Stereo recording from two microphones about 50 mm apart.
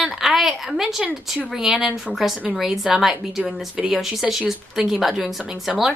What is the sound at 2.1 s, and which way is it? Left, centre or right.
Speech, centre.